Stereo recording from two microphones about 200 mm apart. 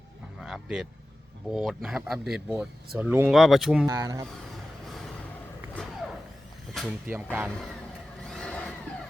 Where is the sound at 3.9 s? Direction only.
15° right (ahead or behind).